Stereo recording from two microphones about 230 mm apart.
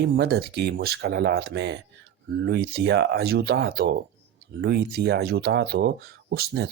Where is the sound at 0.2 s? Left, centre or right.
Right.